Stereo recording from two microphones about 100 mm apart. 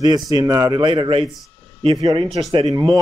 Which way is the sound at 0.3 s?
40° right (ahead or behind).